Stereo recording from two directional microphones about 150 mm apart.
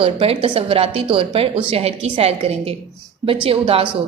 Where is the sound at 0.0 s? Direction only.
40° right (ahead or behind).